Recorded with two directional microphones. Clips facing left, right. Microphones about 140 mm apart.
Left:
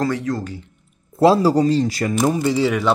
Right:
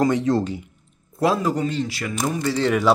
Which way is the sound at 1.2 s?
30° left (ahead or behind).